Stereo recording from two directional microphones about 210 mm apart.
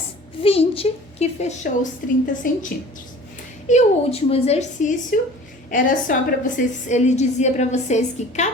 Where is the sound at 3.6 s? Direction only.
30° left (ahead or behind).